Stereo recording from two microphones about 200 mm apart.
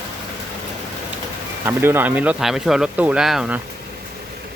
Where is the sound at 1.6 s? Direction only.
10° right (ahead or behind).